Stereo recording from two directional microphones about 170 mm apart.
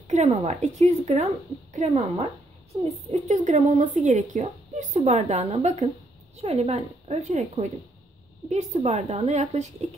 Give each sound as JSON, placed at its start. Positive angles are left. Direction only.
{"t": 0.1, "sound": "a woman's voice", "side_deg": -40}